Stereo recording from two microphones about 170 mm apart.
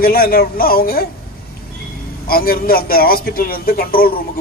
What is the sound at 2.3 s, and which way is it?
A man's voice, 60° left (ahead or behind).